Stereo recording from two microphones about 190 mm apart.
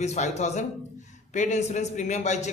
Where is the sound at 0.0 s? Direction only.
35° left (ahead or behind).